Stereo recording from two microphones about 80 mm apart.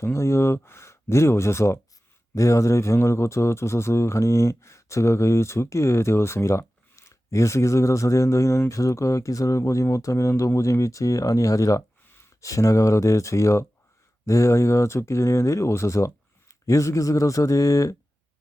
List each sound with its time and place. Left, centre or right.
0.0 s speech: left